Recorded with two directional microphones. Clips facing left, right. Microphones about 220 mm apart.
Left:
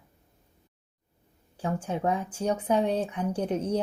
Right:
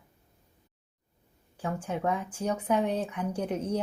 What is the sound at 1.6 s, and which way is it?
Speech, 30° left (ahead or behind).